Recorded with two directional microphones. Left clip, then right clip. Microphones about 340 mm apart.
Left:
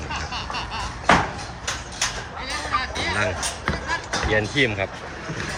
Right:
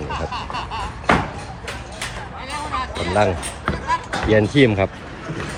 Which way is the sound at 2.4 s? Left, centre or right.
Right.